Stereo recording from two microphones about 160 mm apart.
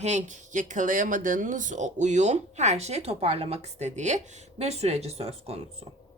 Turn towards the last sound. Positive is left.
turn(degrees=-40)  # may be behind; listen again after turning